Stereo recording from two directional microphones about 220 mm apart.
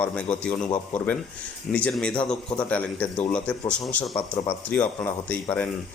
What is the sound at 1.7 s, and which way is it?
A man's voice, 5° left (ahead or behind).